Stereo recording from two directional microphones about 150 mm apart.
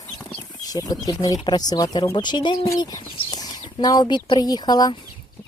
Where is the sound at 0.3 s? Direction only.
35° left (ahead or behind).